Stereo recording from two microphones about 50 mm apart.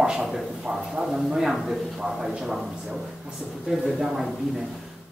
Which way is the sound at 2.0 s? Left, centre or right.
Centre.